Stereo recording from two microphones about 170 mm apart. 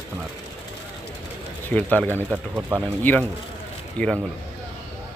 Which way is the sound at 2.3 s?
5° right (ahead or behind).